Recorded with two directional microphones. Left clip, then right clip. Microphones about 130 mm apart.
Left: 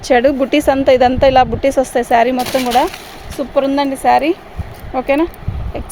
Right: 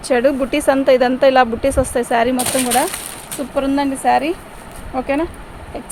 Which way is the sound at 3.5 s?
90° left.